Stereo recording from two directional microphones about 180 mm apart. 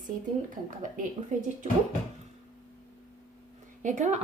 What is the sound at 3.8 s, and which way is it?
Speech, 45° right (ahead or behind).